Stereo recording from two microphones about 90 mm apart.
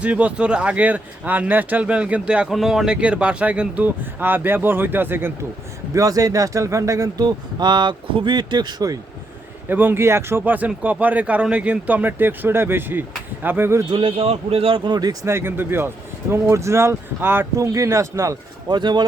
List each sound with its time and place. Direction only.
0.0 s speech: 15° right (ahead or behind)
5.9 s speech: 40° right (ahead or behind)
7.3 s speech: 55° right (ahead or behind)
9.6 s speech: 20° right (ahead or behind)
13.9 s a man's voice: 90° right
14.8 s speech: 50° right (ahead or behind)
15.3 s speech: 25° right (ahead or behind)
17.7 s speech: 35° right (ahead or behind)
18.7 s speech: 55° right (ahead or behind)